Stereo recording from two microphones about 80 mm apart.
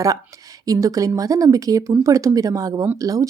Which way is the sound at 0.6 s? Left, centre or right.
Right.